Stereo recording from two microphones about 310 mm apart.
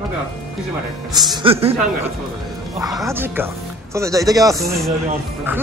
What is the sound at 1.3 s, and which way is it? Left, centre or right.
Speech, centre.